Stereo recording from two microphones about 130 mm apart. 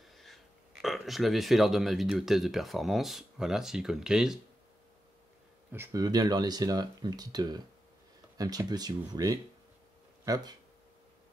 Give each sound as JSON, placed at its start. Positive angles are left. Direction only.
{"t": 0.0, "sound": "speech", "side_deg": 0}
{"t": 5.9, "sound": "speech", "side_deg": -30}